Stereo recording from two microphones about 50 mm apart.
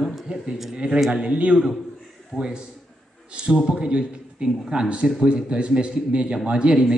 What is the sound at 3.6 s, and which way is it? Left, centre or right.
Speech, centre.